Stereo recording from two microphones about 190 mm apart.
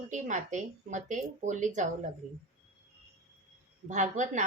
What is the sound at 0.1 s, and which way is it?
A woman's voice, 40° right (ahead or behind).